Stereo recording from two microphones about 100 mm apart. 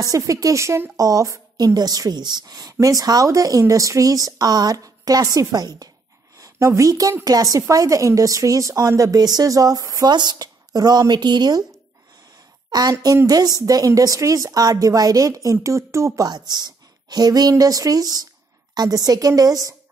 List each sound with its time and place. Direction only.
0.0 s a woman's voice: 35° right (ahead or behind)
10.1 s speech: 45° right (ahead or behind)
12.7 s a woman's voice: 45° right (ahead or behind)
16.2 s a woman's voice: 45° right (ahead or behind)